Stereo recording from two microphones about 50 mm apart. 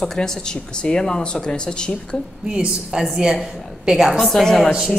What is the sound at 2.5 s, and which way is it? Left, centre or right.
A woman's voice, centre.